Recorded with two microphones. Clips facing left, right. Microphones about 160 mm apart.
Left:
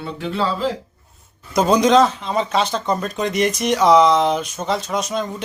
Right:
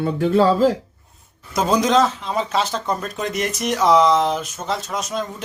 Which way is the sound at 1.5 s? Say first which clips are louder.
Left 3 dB; centre (ahead or behind).